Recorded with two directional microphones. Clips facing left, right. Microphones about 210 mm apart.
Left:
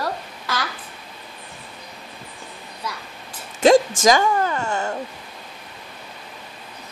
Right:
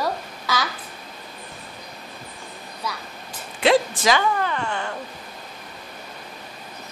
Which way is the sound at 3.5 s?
45° left (ahead or behind).